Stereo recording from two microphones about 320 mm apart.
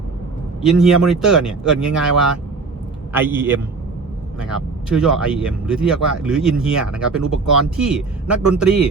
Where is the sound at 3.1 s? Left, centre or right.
Centre.